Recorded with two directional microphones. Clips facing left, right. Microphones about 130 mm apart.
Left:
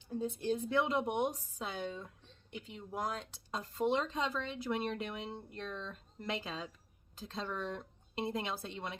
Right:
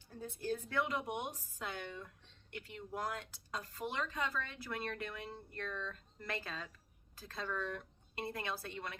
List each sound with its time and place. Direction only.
0.1 s speech: 20° left (ahead or behind)